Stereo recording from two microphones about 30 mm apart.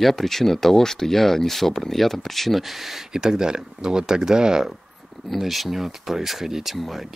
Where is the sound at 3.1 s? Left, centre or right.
Right.